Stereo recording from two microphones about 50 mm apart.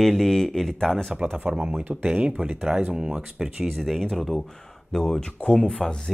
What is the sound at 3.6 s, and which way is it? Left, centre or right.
Speech, centre.